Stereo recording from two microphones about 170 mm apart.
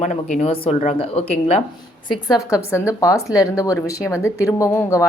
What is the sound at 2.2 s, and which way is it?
Speech, 20° left (ahead or behind).